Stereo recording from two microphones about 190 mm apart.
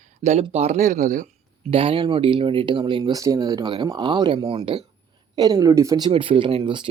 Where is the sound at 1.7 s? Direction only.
30° right (ahead or behind).